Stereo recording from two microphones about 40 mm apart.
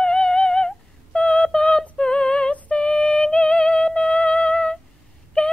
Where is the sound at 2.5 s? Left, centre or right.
Left.